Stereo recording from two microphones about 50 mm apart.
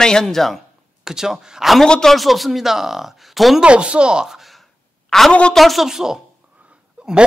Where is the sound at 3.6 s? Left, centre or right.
Right.